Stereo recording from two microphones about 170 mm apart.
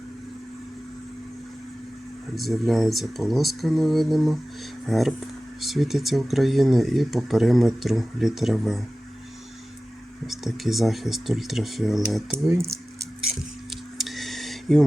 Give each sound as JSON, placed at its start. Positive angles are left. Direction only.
{"t": 2.3, "sound": "speech", "side_deg": 0}
{"t": 10.2, "sound": "speech", "side_deg": 0}
{"t": 12.3, "sound": "speech", "side_deg": -10}
{"t": 14.0, "sound": "a sound", "side_deg": 0}